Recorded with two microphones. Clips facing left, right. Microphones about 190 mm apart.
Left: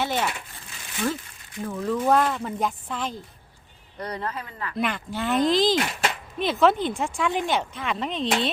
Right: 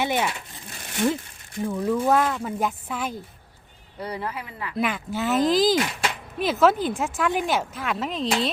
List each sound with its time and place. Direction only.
0.0 s speech: 15° right (ahead or behind)
0.7 s a sound: 55° right (ahead or behind)
1.6 s speech: 10° right (ahead or behind)